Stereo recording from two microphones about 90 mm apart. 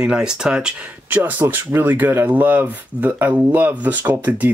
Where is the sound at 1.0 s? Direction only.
20° right (ahead or behind).